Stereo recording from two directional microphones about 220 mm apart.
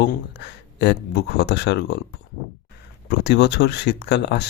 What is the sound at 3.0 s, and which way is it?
Speech, 50° left (ahead or behind).